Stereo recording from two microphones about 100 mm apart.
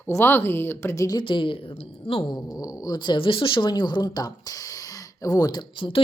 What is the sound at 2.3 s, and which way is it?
A woman's voice, 40° left (ahead or behind).